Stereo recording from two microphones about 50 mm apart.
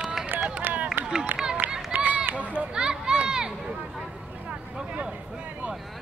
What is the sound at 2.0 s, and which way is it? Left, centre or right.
Run, right.